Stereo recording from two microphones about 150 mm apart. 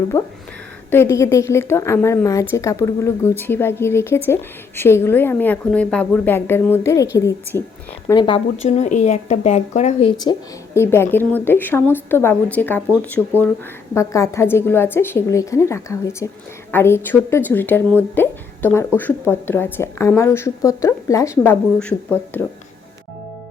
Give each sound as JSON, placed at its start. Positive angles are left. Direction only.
{"t": 0.1, "sound": "a woman's voice", "side_deg": 15}
{"t": 8.0, "sound": "speech", "side_deg": 30}
{"t": 10.8, "sound": "a woman's voice", "side_deg": 15}